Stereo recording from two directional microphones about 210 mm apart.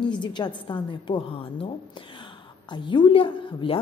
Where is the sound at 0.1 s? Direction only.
20° left (ahead or behind).